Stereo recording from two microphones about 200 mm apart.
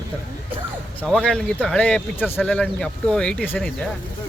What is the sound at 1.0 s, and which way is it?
Speech, 5° left (ahead or behind).